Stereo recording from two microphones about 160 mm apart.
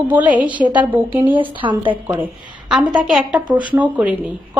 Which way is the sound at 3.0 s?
5° right (ahead or behind).